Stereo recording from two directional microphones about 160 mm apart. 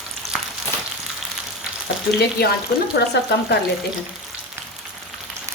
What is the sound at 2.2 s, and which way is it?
Speech, 85° left.